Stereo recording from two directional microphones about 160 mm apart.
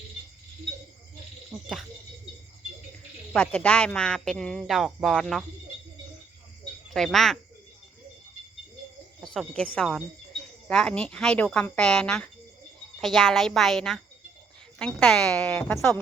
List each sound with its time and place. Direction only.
3.3 s speech: 10° left (ahead or behind)
6.9 s speech: centre (ahead or behind)
9.2 s speech: centre (ahead or behind)